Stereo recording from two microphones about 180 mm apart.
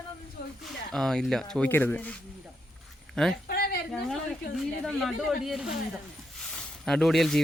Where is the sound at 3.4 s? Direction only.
60° left (ahead or behind).